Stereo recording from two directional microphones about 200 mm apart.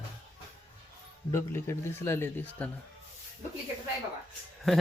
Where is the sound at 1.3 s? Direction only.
15° left (ahead or behind).